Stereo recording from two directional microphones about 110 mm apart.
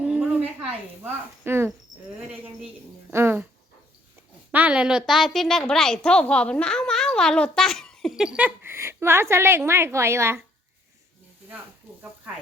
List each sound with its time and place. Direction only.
0.0 s a sound: 10° right (ahead or behind)
3.1 s a woman's voice: 20° right (ahead or behind)
4.5 s a woman's voice: 10° right (ahead or behind); by 8.1 s 5° left (ahead or behind)
8.1 s a woman's voice: 5° right (ahead or behind); by 10.4 s 25° right (ahead or behind)